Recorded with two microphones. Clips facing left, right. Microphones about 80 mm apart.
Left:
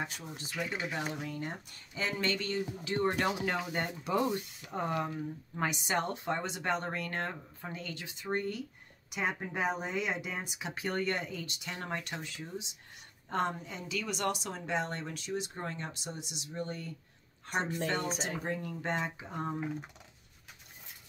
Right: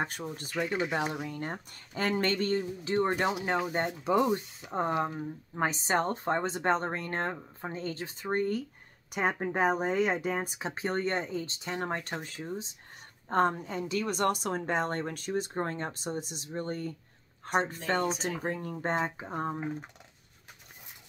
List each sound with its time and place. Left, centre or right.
0.0 s speech: right
0.6 s speech: centre
1.2 s speech: right